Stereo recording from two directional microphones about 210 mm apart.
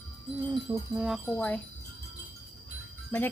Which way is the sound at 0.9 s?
5° right (ahead or behind).